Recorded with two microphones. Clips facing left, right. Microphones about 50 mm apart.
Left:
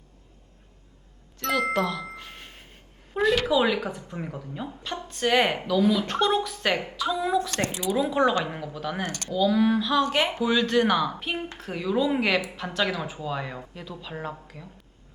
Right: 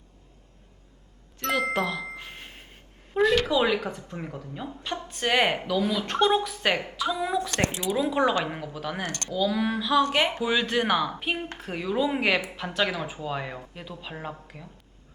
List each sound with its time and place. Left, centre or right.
1.4 s music: centre
3.2 s speech: centre
7.6 s speech: right
8.1 s speech: centre
10.4 s speech: centre